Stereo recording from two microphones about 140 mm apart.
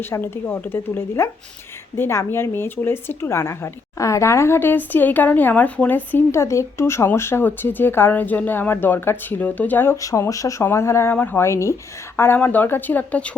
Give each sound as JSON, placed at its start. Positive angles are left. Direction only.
{"t": 0.0, "sound": "speech", "side_deg": 15}